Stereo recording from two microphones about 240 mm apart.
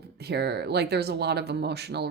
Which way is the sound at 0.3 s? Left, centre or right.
Right.